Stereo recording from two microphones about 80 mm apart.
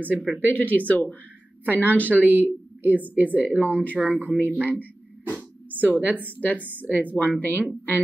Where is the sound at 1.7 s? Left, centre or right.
Right.